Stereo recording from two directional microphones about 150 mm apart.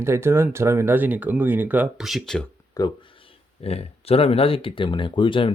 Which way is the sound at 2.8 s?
25° left (ahead or behind).